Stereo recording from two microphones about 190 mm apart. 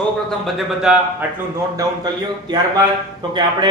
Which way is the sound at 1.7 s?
20° right (ahead or behind).